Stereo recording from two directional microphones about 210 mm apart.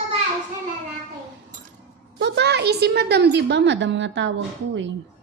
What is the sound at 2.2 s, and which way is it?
A woman's voice, 55° right (ahead or behind).